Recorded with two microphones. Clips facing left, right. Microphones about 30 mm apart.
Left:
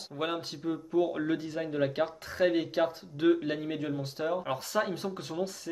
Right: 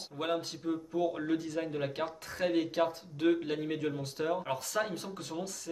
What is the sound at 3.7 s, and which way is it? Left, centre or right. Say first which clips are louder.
Speech: left 1 dB; centre.